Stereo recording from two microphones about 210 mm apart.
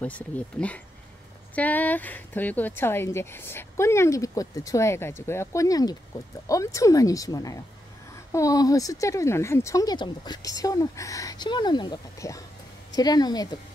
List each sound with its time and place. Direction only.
0.0 s a woman's voice: 5° left (ahead or behind)